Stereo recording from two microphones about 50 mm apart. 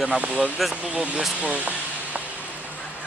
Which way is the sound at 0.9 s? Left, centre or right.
Centre.